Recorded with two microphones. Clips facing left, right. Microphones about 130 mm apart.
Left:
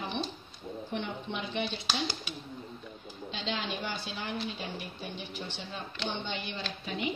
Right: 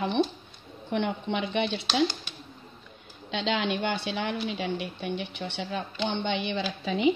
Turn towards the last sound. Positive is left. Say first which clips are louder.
# right 8 dB
turn(degrees=-90)